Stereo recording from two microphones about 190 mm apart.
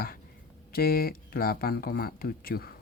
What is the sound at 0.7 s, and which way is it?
Speech, 50° left (ahead or behind).